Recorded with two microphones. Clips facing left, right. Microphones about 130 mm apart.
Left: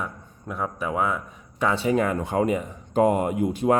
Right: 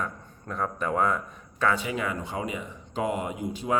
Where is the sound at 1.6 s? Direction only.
30° left (ahead or behind).